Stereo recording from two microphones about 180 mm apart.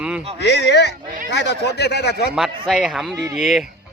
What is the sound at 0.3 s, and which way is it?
Speech, 65° left (ahead or behind).